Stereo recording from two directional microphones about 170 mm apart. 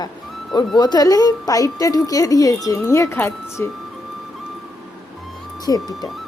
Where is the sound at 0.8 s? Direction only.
25° left (ahead or behind).